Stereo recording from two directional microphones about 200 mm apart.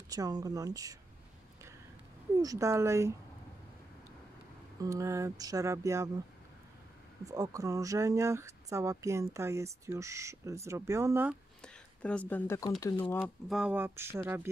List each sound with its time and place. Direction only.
0.1 s speech: 20° right (ahead or behind)
2.3 s speech: 15° right (ahead or behind)
4.7 s speech: 15° right (ahead or behind)
7.2 s speech: 15° right (ahead or behind)
11.6 s speech: 5° left (ahead or behind)
13.5 s speech: 5° right (ahead or behind)